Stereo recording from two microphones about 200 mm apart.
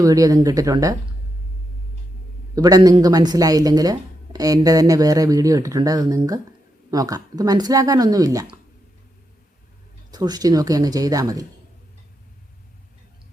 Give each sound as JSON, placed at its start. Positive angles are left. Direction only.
{"t": 0.0, "sound": "speech", "side_deg": -15}
{"t": 2.6, "sound": "speech", "side_deg": -20}
{"t": 10.1, "sound": "speech", "side_deg": -20}